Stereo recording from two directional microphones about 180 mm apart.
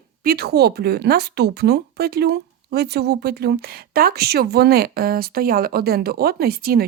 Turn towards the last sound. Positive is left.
turn(degrees=-55)  # may be behind; listen again after turning